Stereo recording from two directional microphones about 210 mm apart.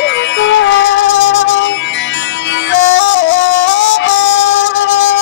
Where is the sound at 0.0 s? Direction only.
60° left (ahead or behind).